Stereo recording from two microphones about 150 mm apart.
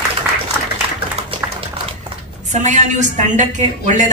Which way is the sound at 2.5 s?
55° right (ahead or behind).